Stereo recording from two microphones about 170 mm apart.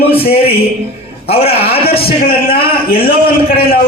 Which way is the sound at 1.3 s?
35° left (ahead or behind).